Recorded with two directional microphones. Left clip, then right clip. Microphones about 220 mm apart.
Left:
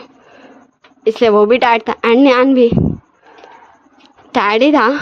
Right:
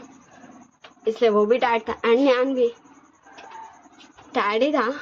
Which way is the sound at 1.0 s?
50° left (ahead or behind).